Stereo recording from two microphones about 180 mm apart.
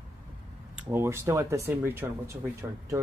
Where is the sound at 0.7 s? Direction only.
10° right (ahead or behind).